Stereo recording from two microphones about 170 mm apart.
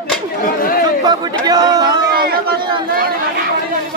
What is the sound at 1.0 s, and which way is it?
Chatter, 25° right (ahead or behind).